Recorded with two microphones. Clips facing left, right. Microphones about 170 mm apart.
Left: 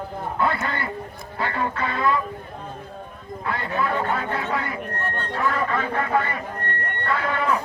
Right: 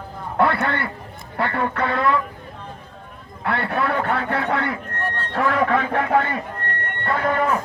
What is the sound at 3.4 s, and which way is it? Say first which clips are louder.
Speech: right 3 dB; 70° right (ahead or behind).